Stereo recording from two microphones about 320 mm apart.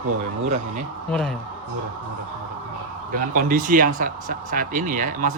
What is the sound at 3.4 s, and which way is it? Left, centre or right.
Speech, right.